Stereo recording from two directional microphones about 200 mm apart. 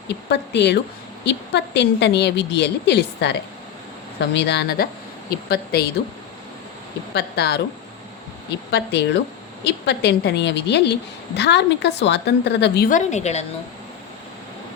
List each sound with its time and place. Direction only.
0.1 s a woman's voice: 60° left (ahead or behind)
7.1 s a woman's voice: 55° left (ahead or behind)
8.7 s a woman's voice: 60° left (ahead or behind)
13.0 s a woman's voice: 35° left (ahead or behind)